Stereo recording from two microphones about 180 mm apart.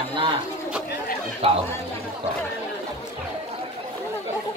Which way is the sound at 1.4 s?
30° right (ahead or behind).